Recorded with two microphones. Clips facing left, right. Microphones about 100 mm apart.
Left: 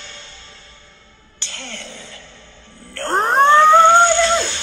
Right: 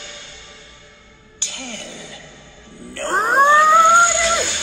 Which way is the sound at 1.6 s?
15° right (ahead or behind).